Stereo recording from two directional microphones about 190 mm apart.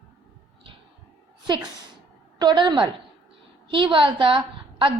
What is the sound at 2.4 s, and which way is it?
A woman's voice, 20° right (ahead or behind).